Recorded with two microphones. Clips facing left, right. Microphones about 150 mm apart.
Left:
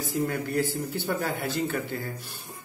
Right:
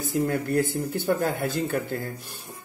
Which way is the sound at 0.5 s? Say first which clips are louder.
Right 3 dB; 50° right (ahead or behind).